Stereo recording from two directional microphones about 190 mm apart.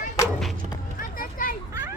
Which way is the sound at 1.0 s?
45° left (ahead or behind).